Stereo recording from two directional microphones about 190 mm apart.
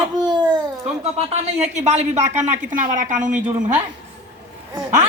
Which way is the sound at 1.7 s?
40° right (ahead or behind).